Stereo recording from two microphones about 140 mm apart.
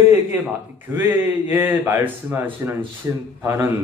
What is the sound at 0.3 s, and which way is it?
A man's voice, 15° right (ahead or behind).